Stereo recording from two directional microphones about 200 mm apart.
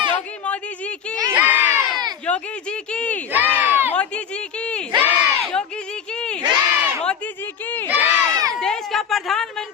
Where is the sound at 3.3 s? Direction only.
10° right (ahead or behind).